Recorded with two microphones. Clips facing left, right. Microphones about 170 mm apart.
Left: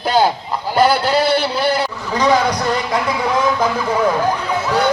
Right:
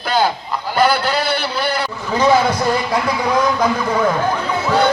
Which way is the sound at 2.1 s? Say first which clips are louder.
Right 1 dB; 5° right (ahead or behind).